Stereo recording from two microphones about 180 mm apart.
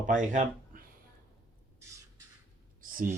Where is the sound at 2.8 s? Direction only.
50° right (ahead or behind).